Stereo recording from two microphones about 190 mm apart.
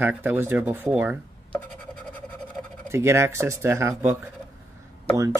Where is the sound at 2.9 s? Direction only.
15° right (ahead or behind).